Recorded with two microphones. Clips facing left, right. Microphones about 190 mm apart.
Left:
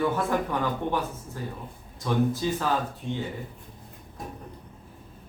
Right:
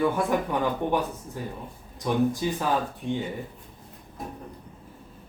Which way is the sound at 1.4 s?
15° right (ahead or behind).